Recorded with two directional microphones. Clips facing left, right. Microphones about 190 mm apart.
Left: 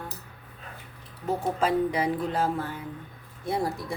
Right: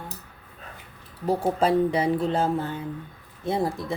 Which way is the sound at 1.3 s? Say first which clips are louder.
Right 4 dB; 30° right (ahead or behind).